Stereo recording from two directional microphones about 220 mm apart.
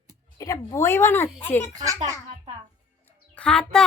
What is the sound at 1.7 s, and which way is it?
Speech, 15° right (ahead or behind).